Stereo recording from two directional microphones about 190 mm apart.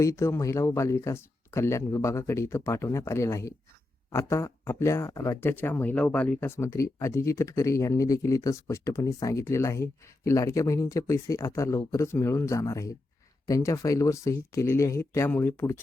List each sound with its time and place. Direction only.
0.0 s speech: 15° left (ahead or behind)